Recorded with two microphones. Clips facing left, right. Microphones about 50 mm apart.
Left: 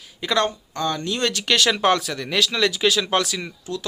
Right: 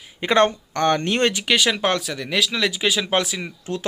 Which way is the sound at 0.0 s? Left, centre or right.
Right.